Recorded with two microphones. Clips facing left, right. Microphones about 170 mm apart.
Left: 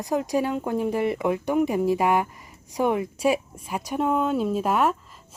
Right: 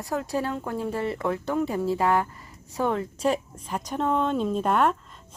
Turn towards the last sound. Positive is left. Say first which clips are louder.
# even
turn(degrees=5)  # may be behind; listen again after turning